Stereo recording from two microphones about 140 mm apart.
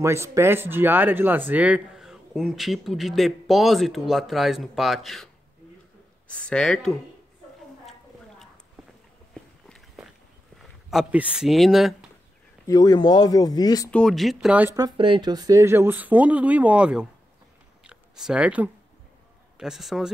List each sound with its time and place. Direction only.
0.0 s speech: 20° right (ahead or behind); by 7.0 s 5° left (ahead or behind)
9.3 s walk: centre (ahead or behind)
10.9 s speech: 5° right (ahead or behind)
12.6 s speech: 25° left (ahead or behind)
13.8 s speech: 5° left (ahead or behind); by 14.8 s 10° right (ahead or behind)
14.8 s speech: 35° right (ahead or behind); by 17.1 s 5° right (ahead or behind)
17.8 s a sound: 5° right (ahead or behind)
19.5 s a man's voice: 5° right (ahead or behind)